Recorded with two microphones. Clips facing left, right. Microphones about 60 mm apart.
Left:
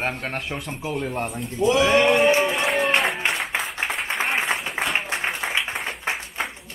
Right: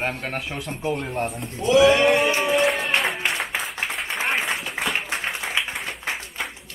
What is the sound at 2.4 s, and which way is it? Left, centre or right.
Music, centre.